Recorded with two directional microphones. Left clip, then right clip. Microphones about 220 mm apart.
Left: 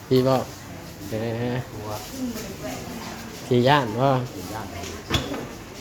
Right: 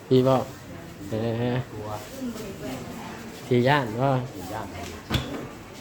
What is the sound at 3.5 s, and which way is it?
Speech, 5° left (ahead or behind).